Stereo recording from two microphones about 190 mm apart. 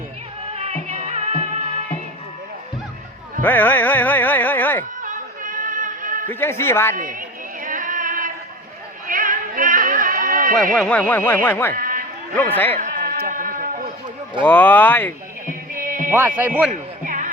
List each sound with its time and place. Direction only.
0.5 s music: 35° right (ahead or behind)
3.4 s speech: 10° left (ahead or behind)
5.0 s a sound: 45° right (ahead or behind)
6.2 s speech: 10° left (ahead or behind)
6.9 s a sound: 45° right (ahead or behind)
9.0 s run: 45° right (ahead or behind)
10.5 s speech: centre (ahead or behind)
11.7 s a sound: 45° right (ahead or behind)
12.4 s speech: 10° left (ahead or behind)
12.8 s a sound: 45° right (ahead or behind)
14.4 s speech: 10° left (ahead or behind)
15.7 s music: 45° right (ahead or behind)
16.0 s speech: 10° right (ahead or behind)
17.0 s music: 45° right (ahead or behind)